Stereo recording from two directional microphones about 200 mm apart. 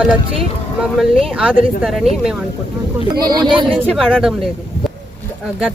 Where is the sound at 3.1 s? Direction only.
20° right (ahead or behind).